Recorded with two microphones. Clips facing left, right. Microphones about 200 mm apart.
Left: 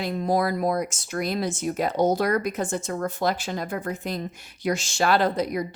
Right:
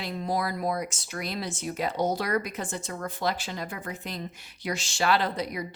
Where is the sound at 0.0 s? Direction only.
45° left (ahead or behind).